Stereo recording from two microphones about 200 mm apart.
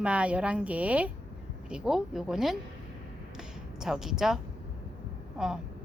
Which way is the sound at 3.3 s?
Centre (ahead or behind).